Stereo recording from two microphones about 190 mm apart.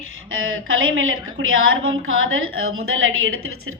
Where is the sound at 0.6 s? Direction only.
90° right.